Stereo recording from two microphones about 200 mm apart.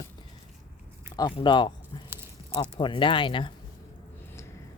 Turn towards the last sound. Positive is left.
turn(degrees=25)  # may be behind; listen again after turning